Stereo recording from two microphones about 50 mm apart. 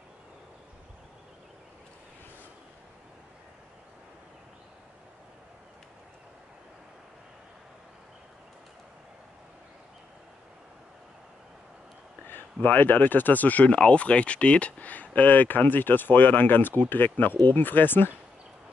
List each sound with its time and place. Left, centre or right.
12.6 s speech: left
13.7 s speech: left